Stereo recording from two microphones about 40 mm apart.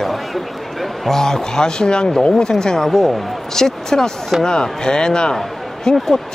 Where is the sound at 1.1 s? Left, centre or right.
Centre.